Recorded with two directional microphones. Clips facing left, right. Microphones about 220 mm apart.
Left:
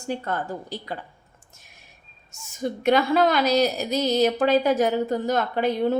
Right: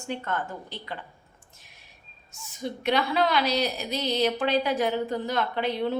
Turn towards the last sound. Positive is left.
turn(degrees=45)  # may be behind; listen again after turning